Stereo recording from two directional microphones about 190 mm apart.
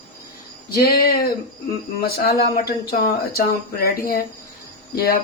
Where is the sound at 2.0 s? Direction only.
50° left (ahead or behind).